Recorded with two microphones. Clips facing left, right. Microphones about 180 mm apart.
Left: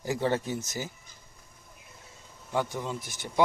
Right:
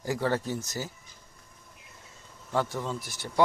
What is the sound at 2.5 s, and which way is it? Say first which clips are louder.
Speech: right 1 dB; 15° left (ahead or behind).